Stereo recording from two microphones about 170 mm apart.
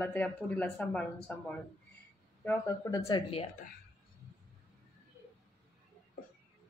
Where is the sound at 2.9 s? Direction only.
20° left (ahead or behind).